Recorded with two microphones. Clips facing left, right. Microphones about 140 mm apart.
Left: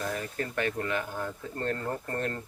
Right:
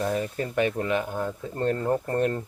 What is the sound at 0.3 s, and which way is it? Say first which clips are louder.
Speech: right 5 dB; 20° right (ahead or behind).